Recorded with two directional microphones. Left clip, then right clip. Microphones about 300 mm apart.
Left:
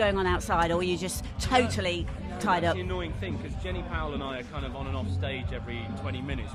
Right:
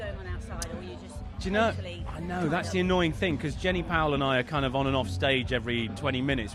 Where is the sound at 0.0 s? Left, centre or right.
Left.